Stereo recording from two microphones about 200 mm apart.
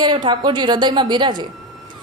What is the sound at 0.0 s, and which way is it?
A woman's voice, 20° right (ahead or behind).